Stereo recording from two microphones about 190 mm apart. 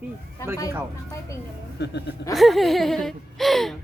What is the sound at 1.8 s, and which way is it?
Speech, 60° left (ahead or behind).